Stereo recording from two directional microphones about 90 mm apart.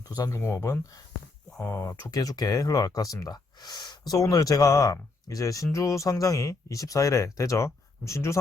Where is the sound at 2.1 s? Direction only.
45° left (ahead or behind).